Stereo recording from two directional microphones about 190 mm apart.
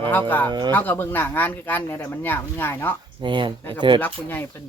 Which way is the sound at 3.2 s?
25° right (ahead or behind).